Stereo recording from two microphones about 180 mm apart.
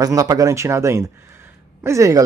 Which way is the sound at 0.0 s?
20° right (ahead or behind).